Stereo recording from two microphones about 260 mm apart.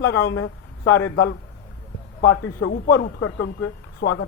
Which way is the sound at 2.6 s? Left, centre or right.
Left.